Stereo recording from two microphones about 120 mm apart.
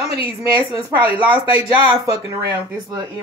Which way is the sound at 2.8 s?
40° right (ahead or behind).